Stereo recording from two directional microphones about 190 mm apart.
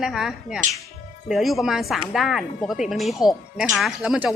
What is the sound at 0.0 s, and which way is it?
Speech, centre (ahead or behind).